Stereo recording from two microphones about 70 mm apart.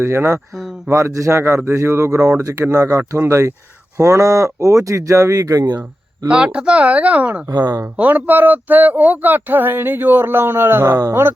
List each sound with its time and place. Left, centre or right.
0.0 s a man's voice: right
6.2 s speech: centre
7.5 s speech: right
7.9 s a man's voice: right